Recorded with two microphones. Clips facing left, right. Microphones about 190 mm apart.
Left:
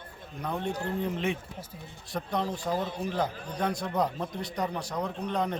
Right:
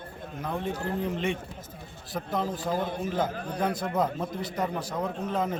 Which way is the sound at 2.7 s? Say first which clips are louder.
Right 2 dB; 55° right (ahead or behind).